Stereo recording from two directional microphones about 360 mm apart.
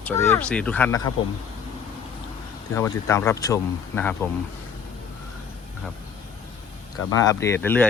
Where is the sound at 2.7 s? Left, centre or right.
Centre.